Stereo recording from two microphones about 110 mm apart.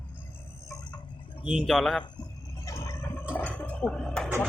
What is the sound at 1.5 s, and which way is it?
Speech, 5° right (ahead or behind).